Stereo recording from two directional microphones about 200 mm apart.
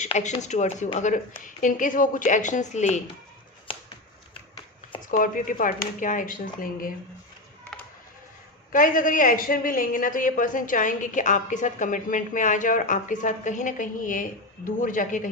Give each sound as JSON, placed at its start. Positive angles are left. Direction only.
{"t": 0.0, "sound": "a woman's voice", "side_deg": 35}
{"t": 4.9, "sound": "a woman's voice", "side_deg": 40}
{"t": 8.7, "sound": "a woman's voice", "side_deg": 40}